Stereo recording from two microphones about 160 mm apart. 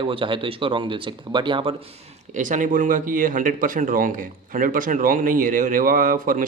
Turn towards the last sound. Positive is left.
turn(degrees=-60)  # may be behind; listen again after turning